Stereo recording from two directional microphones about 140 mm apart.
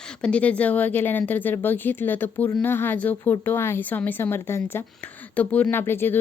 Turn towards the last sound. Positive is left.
turn(degrees=15)  # may be behind; listen again after turning